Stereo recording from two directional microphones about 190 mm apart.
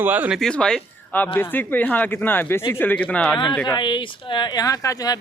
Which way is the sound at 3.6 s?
20° left (ahead or behind).